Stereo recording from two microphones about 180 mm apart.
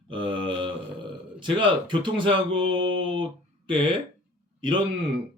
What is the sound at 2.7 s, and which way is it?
Mantra, 90° right.